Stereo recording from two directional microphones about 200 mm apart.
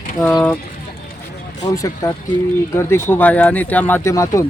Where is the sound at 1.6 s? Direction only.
15° left (ahead or behind).